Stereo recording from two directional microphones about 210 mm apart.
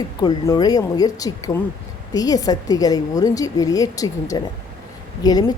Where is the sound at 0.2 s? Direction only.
20° left (ahead or behind).